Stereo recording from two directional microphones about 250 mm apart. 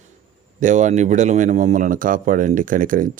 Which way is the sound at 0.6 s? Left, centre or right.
Right.